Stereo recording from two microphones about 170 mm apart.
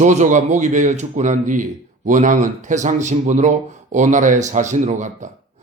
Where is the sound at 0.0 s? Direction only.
45° right (ahead or behind).